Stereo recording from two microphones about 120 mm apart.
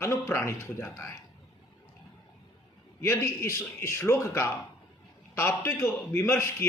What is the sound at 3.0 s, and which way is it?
A man's voice, 25° left (ahead or behind).